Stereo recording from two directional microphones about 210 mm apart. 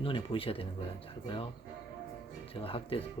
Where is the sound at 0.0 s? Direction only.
25° left (ahead or behind).